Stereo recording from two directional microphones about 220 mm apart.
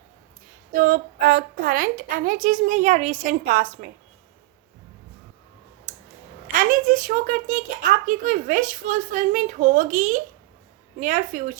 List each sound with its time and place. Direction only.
0.7 s a child's voice: 40° right (ahead or behind)
6.5 s a child's voice: 40° right (ahead or behind)